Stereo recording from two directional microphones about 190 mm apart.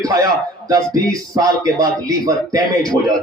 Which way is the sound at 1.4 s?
20° right (ahead or behind).